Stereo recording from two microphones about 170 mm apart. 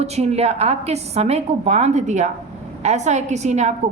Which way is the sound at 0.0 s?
40° right (ahead or behind).